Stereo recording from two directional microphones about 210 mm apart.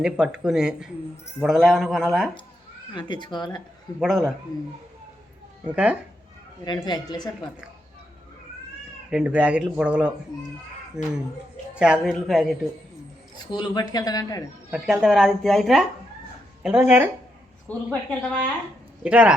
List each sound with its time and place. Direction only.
0.0 s speech: 5° right (ahead or behind)
2.9 s speech: 20° left (ahead or behind)
4.0 s speech: centre (ahead or behind)
5.6 s speech: 5° right (ahead or behind)
6.7 s speech: 20° left (ahead or behind)
9.0 s speech: 5° right (ahead or behind)
13.3 s speech: 20° left (ahead or behind)
14.7 s speech: centre (ahead or behind)
17.7 s a woman's voice: 5° left (ahead or behind)
19.0 s speech: 5° right (ahead or behind)